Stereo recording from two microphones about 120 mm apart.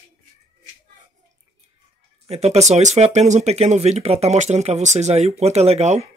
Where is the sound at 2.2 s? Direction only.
60° right (ahead or behind).